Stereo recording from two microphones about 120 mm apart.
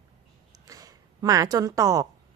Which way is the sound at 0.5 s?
30° right (ahead or behind).